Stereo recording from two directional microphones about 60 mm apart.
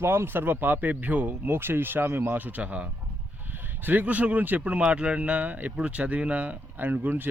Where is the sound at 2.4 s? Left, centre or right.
Right.